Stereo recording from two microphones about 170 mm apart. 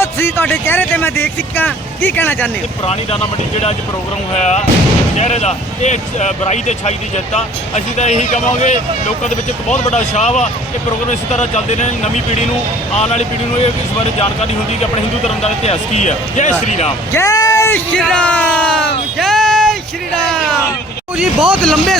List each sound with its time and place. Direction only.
0.0 s speech: 15° left (ahead or behind)
2.8 s speech: 35° left (ahead or behind)
4.4 s speech: 40° left (ahead or behind)
7.9 s speech: 45° left (ahead or behind)
17.1 s speech: 15° left (ahead or behind)